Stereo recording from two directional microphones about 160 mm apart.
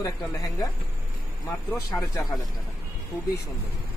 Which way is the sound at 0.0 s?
25° left (ahead or behind).